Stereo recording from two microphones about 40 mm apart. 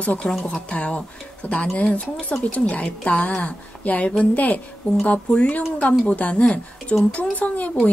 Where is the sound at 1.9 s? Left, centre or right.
Left.